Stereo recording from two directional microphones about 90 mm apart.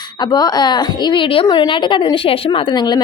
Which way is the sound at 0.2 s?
50° left (ahead or behind).